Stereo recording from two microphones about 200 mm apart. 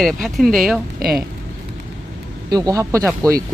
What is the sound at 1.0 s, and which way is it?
Speech, 50° right (ahead or behind).